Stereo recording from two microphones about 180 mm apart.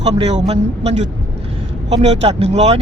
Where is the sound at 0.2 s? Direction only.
35° right (ahead or behind).